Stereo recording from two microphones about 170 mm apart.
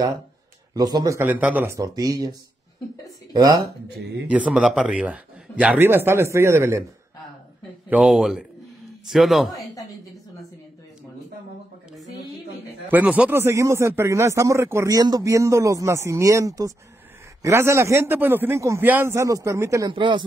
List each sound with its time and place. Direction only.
0.7 s speech: 25° right (ahead or behind)
4.3 s speech: 5° right (ahead or behind)
7.9 s a man's voice: centre (ahead or behind)
12.8 s speech: 10° right (ahead or behind)
19.9 s speech: 30° right (ahead or behind)